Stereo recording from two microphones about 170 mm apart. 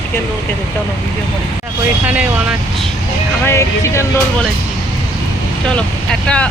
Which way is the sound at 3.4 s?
15° left (ahead or behind).